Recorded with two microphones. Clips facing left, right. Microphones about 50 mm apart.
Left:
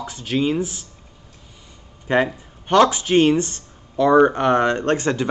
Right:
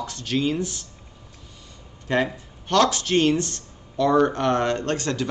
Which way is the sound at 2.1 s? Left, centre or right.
Left.